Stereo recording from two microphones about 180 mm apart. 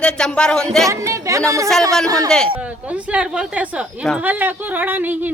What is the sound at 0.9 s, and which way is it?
Speech, 15° right (ahead or behind).